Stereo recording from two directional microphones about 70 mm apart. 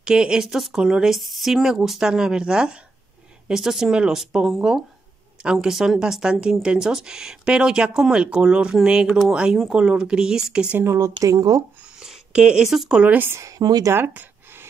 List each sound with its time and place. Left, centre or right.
0.0 s speech: centre
10.8 s speech: right
11.2 s speech: right
12.0 s a sound: centre
12.6 s speech: centre
13.4 s speech: right
13.9 s a sound: right